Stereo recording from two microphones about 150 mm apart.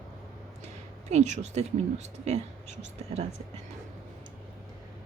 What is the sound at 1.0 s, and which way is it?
Speech, 50° right (ahead or behind).